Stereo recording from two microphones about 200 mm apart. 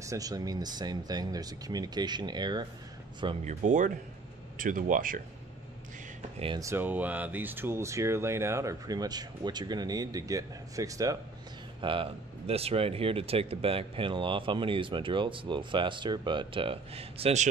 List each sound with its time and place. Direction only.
0.0 s speech: 15° right (ahead or behind)
3.4 s speech: 40° right (ahead or behind)
6.4 s speech: 25° right (ahead or behind)
6.7 s speech: 10° right (ahead or behind); by 17.5 s 30° right (ahead or behind)